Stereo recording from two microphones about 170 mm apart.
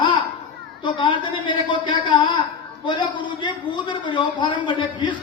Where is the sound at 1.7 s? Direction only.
25° left (ahead or behind).